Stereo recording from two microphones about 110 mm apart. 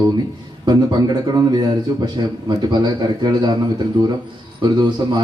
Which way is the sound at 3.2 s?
40° right (ahead or behind).